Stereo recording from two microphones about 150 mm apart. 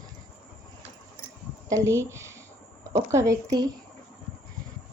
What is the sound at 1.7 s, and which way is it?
A woman's voice, 20° right (ahead or behind).